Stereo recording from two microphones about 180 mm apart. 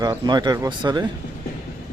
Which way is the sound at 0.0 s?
20° right (ahead or behind).